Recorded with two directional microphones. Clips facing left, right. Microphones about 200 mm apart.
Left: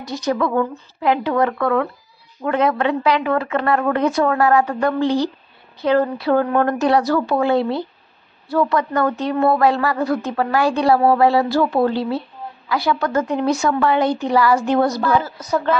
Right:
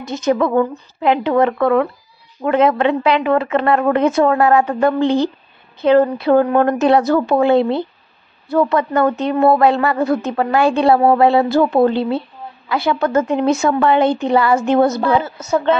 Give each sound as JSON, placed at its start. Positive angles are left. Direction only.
{"t": 0.0, "sound": "a woman's voice", "side_deg": -25}